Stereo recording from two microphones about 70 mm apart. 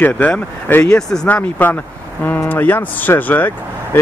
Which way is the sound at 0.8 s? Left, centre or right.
Centre.